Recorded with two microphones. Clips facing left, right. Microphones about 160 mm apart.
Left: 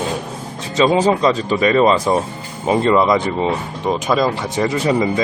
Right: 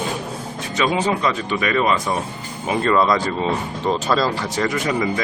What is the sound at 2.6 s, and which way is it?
Speech, 20° left (ahead or behind).